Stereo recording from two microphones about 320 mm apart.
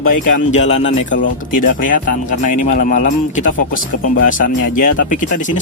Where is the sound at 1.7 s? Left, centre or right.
Left.